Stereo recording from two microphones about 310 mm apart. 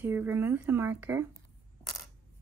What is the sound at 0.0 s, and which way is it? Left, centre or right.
Speech, centre.